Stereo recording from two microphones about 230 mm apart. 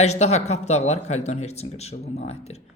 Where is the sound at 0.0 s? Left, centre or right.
Left.